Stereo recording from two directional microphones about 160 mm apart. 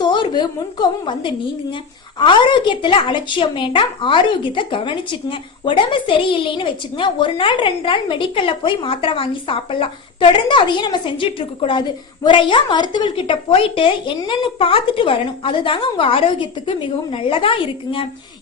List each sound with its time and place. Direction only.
0.0 s a woman's voice: 30° left (ahead or behind)